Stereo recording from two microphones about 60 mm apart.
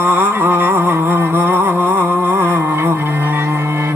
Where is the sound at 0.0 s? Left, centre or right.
Right.